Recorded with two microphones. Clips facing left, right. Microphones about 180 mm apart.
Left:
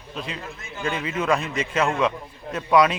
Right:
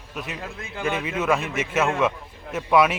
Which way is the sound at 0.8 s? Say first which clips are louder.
Right 2 dB; 70° right (ahead or behind).